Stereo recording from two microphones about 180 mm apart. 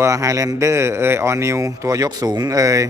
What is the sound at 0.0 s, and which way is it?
A man's voice, 15° right (ahead or behind).